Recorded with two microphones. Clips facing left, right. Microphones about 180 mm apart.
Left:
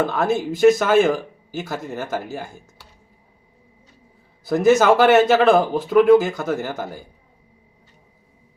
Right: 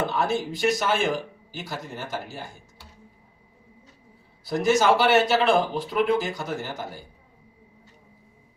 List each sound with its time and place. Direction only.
0.0 s speech: 45° left (ahead or behind)
4.4 s speech: 50° left (ahead or behind)